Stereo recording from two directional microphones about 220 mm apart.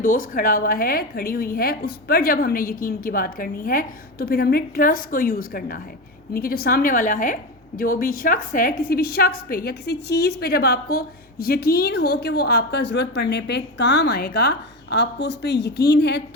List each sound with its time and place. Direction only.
0.0 s a woman's voice: 40° left (ahead or behind)